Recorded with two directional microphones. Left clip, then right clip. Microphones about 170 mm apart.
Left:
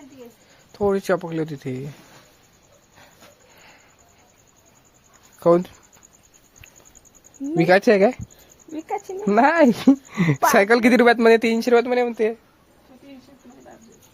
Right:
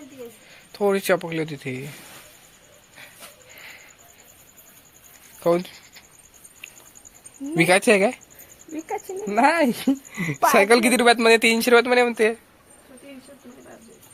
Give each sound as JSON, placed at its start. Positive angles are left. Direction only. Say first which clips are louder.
{"t": 0.7, "sound": "speech", "louder": "even", "side_deg": 25}
{"t": 5.4, "sound": "speech", "louder": "left 4 dB", "side_deg": 40}
{"t": 7.7, "sound": "speech", "louder": "left 3 dB", "side_deg": 30}
{"t": 9.2, "sound": "speech", "louder": "left 3 dB", "side_deg": 55}